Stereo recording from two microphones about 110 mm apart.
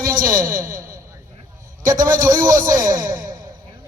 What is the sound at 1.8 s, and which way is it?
A man's voice, 35° right (ahead or behind).